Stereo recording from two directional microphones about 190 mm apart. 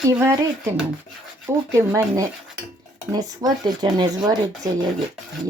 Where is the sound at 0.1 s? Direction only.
15° right (ahead or behind).